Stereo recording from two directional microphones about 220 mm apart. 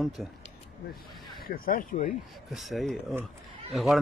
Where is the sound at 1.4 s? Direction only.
40° left (ahead or behind).